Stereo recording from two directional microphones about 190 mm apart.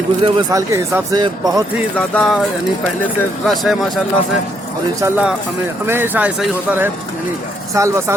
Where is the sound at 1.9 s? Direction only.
5° left (ahead or behind).